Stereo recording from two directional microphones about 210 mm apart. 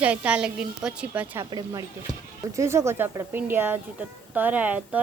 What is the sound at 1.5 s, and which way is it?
Speech, 20° right (ahead or behind).